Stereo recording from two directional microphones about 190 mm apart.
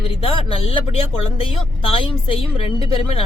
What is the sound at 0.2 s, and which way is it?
A woman's voice, 30° left (ahead or behind).